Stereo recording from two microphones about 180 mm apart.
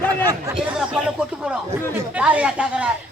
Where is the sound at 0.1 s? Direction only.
20° right (ahead or behind).